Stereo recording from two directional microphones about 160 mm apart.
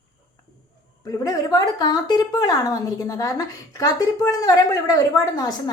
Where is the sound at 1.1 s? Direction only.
20° left (ahead or behind).